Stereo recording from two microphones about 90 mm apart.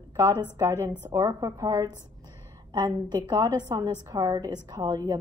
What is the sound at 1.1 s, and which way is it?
A woman's voice, 40° right (ahead or behind).